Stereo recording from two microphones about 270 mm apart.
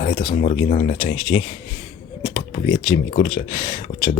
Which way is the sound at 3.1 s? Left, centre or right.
Left.